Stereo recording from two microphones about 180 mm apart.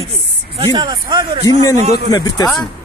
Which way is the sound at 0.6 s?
25° right (ahead or behind).